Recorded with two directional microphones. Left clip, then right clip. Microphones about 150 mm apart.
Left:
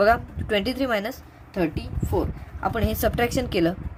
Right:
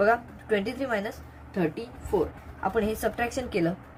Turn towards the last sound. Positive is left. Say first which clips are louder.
# left 5 dB
turn(degrees=45)  # may be behind; listen again after turning